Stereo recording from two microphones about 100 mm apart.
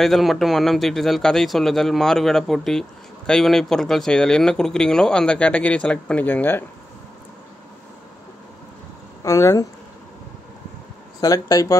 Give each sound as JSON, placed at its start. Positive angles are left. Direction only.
{"t": 0.0, "sound": "a man's voice", "side_deg": 0}
{"t": 9.2, "sound": "speech", "side_deg": 30}
{"t": 11.1, "sound": "speech", "side_deg": 40}